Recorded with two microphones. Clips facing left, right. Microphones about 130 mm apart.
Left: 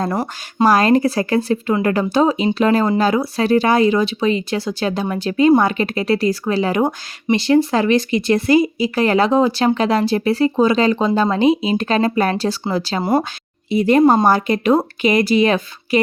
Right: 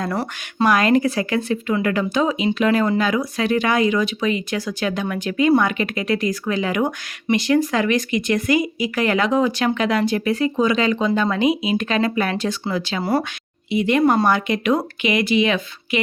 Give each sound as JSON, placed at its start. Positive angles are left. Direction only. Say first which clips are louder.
{"t": 0.6, "sound": "speech", "louder": "left 3 dB", "side_deg": 35}
{"t": 13.0, "sound": "speech", "louder": "left 3 dB", "side_deg": 20}
{"t": 13.7, "sound": "speech", "louder": "left 4 dB", "side_deg": 35}
{"t": 14.0, "sound": "speech", "louder": "left 4 dB", "side_deg": 25}
{"t": 14.3, "sound": "speech", "louder": "left 4 dB", "side_deg": 35}